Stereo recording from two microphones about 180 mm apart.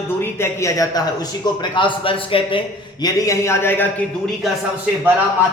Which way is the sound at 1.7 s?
30° left (ahead or behind).